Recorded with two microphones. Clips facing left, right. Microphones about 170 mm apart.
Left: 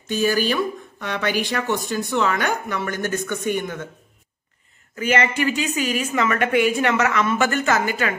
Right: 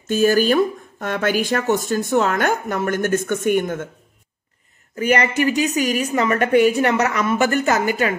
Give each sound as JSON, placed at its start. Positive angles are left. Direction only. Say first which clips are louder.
{"t": 0.1, "sound": "speech", "louder": "right 5 dB", "side_deg": -45}
{"t": 4.9, "sound": "a woman's voice", "louder": "right 3 dB", "side_deg": -40}